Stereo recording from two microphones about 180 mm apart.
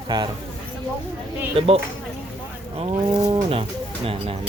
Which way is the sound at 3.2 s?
30° right (ahead or behind).